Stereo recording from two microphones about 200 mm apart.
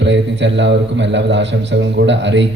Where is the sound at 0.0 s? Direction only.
65° right (ahead or behind).